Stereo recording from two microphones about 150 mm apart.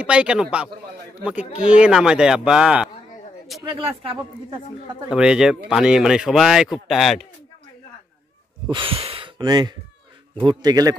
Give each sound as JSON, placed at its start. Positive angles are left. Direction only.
{"t": 0.0, "sound": "a man's voice", "side_deg": -5}
{"t": 3.6, "sound": "speech", "side_deg": -35}
{"t": 5.1, "sound": "speech", "side_deg": -5}
{"t": 8.6, "sound": "a man's voice", "side_deg": -35}